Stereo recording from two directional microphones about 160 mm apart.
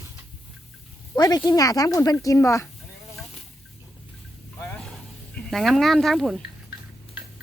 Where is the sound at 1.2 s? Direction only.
25° left (ahead or behind).